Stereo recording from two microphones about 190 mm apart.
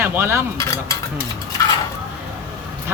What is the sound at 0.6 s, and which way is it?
Dishes, 15° left (ahead or behind).